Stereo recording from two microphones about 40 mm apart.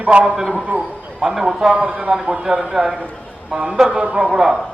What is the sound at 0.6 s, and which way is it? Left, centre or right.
Speech, right.